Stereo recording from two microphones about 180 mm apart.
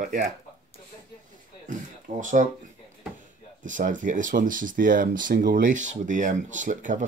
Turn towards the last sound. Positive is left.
turn(degrees=-45)  # may be behind; listen again after turning